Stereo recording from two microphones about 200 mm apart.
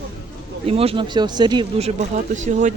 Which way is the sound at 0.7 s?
30° right (ahead or behind).